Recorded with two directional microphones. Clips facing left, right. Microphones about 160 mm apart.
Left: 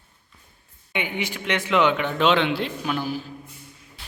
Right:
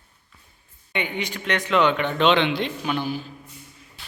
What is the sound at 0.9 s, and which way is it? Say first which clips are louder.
A man's voice: even; 10° left (ahead or behind).